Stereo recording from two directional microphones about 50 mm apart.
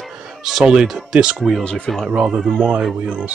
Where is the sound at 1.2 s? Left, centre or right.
Right.